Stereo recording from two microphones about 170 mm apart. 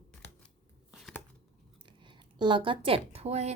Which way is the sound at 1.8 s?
30° right (ahead or behind).